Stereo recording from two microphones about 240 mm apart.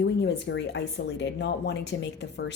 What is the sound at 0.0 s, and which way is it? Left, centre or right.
A woman's voice, left.